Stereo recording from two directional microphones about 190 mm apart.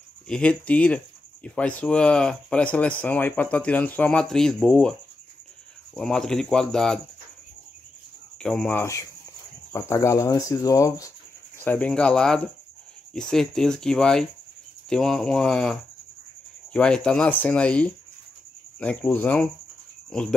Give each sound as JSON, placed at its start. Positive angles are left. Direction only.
{"t": 0.3, "sound": "speech", "side_deg": 5}
{"t": 5.9, "sound": "speech", "side_deg": 5}
{"t": 8.4, "sound": "speech", "side_deg": 5}